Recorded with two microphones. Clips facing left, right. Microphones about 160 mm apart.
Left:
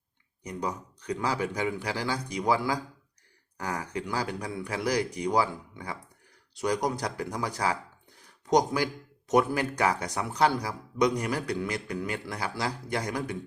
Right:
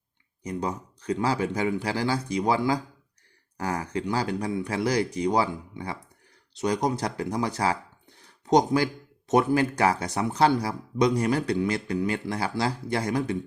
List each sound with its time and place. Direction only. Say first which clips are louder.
0.4 s speech: right 3 dB; 25° right (ahead or behind)